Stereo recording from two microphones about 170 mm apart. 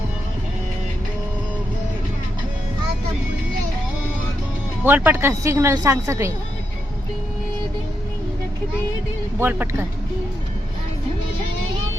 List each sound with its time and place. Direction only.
4.8 s a woman's voice: 10° right (ahead or behind)
9.4 s a woman's voice: 15° right (ahead or behind)